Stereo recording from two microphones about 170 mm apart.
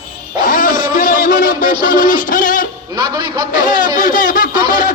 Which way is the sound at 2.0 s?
50° left (ahead or behind).